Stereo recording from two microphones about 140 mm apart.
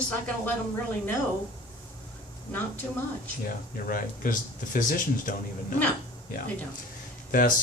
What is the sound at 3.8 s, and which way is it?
Speech, 85° left.